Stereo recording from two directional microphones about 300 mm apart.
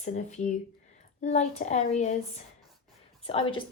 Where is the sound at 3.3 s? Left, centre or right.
Centre.